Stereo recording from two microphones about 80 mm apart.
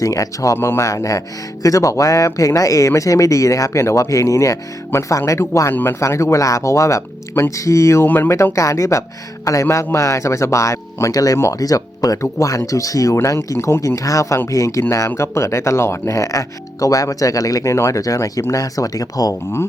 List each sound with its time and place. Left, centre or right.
0.0 s speech: left
0.6 s speech: left
0.9 s speech: left
5.7 s speech: left
8.0 s speech: left
8.5 s speech: left